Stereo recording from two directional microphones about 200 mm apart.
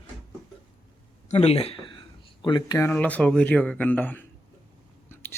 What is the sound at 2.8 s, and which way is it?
Speech, 10° left (ahead or behind).